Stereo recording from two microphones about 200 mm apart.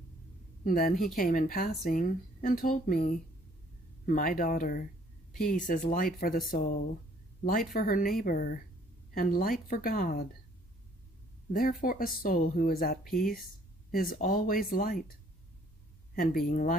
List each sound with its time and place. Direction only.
0.7 s speech: 45° left (ahead or behind)
7.4 s speech: 45° left (ahead or behind)
11.8 s speech: 45° left (ahead or behind)
16.2 s speech: 45° left (ahead or behind)